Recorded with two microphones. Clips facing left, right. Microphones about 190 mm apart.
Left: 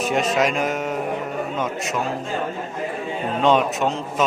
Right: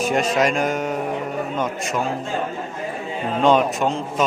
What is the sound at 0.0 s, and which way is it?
Speech, centre (ahead or behind).